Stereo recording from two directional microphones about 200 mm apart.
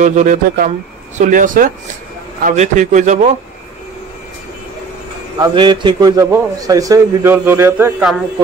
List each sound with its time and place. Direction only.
0.0 s a man's voice: 40° right (ahead or behind)
5.4 s a man's voice: 25° right (ahead or behind); by 8.2 s 5° right (ahead or behind)